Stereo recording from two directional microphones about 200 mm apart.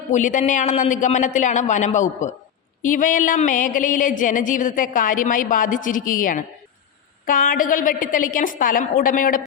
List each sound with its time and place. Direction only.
0.1 s a woman's voice: 40° left (ahead or behind)